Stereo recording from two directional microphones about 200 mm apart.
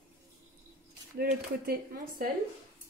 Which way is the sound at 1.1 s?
50° right (ahead or behind).